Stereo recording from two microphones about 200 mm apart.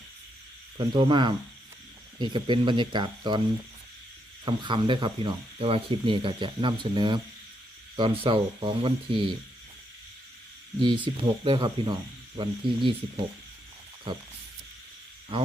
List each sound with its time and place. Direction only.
0.8 s speech: 25° right (ahead or behind)
4.4 s speech: 25° right (ahead or behind)
10.8 s speech: 25° right (ahead or behind)